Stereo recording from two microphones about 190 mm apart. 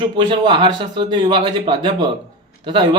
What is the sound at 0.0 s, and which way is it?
Speech, 25° right (ahead or behind).